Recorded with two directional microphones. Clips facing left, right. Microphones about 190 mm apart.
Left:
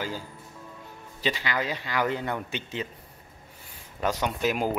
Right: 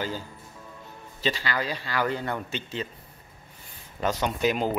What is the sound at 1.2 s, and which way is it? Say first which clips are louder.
Speech: even; 15° left (ahead or behind).